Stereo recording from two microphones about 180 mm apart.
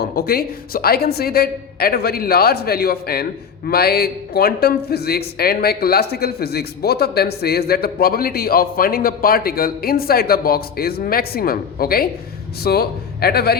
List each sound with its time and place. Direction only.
0.0 s a man's voice: 55° left (ahead or behind)